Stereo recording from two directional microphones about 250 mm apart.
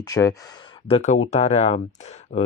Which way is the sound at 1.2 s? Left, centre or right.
Left.